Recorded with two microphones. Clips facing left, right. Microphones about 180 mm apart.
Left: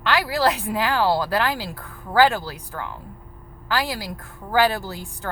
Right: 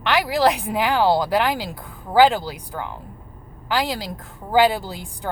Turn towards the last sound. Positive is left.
turn(degrees=-15)  # may be behind; listen again after turning